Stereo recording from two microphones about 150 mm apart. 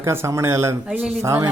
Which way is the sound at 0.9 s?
5° right (ahead or behind).